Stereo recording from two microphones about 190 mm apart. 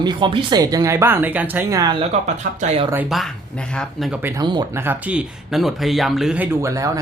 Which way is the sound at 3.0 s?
Centre (ahead or behind).